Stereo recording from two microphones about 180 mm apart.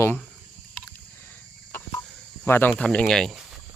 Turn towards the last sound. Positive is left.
turn(degrees=0)  # may be behind; listen again after turning